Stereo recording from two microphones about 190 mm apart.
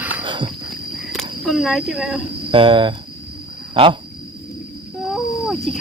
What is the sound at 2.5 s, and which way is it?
Speech, 25° right (ahead or behind).